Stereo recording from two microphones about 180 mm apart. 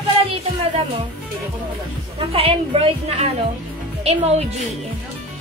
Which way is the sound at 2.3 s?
35° right (ahead or behind).